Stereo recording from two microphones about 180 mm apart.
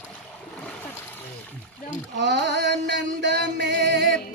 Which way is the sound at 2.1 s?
75° right (ahead or behind).